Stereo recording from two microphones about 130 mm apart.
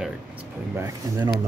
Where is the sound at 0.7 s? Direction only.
20° right (ahead or behind).